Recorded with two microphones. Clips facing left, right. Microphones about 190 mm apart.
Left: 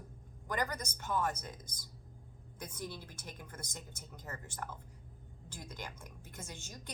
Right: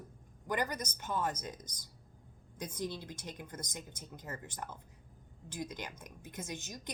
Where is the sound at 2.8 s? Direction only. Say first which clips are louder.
Right 6 dB; 20° right (ahead or behind).